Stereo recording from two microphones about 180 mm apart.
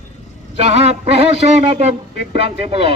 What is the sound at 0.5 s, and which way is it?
A man's voice, 35° right (ahead or behind).